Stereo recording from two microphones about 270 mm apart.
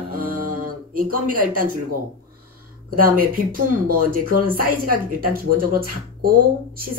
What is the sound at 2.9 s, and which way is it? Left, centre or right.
Speech, right.